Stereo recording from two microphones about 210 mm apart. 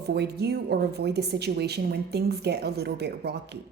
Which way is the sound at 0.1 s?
50° right (ahead or behind).